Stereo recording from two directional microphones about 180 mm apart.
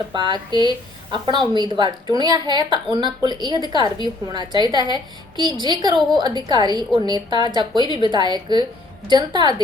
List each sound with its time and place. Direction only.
0.1 s a woman's voice: 25° right (ahead or behind)